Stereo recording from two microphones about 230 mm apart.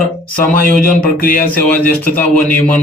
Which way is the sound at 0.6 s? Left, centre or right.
Left.